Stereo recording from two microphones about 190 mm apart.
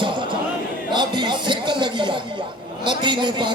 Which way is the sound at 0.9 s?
25° right (ahead or behind).